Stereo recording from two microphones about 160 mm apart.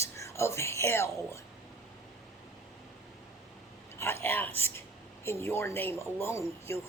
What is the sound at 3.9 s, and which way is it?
A man's voice, 15° left (ahead or behind).